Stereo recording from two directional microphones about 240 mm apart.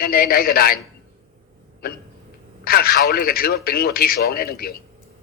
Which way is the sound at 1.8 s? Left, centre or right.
Left.